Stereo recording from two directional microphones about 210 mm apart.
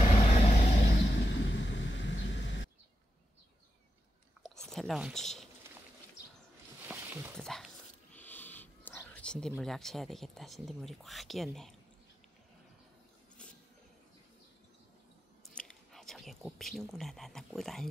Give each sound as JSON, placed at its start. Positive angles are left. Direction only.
{"t": 0.0, "sound": "vehicle", "side_deg": 30}
{"t": 0.7, "sound": "vehicle", "side_deg": 50}
{"t": 4.4, "sound": "whispering", "side_deg": 0}
{"t": 6.9, "sound": "a sound", "side_deg": -10}
{"t": 7.3, "sound": "whispering", "side_deg": 0}
{"t": 15.4, "sound": "whispering", "side_deg": 5}